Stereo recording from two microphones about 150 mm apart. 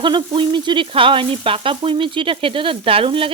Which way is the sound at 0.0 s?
30° right (ahead or behind).